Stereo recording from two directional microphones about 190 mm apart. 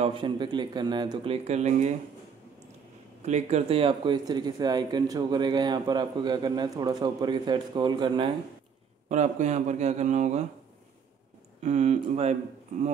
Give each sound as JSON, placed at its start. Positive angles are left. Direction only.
{"t": 0.0, "sound": "speech", "side_deg": -25}
{"t": 3.2, "sound": "speech", "side_deg": -35}
{"t": 9.1, "sound": "speech", "side_deg": -40}
{"t": 11.6, "sound": "speech", "side_deg": -35}